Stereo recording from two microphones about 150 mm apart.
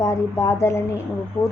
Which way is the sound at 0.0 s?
20° left (ahead or behind).